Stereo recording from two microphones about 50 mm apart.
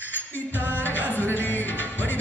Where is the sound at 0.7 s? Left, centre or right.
Left.